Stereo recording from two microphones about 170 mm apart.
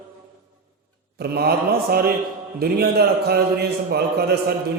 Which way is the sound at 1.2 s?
65° right (ahead or behind).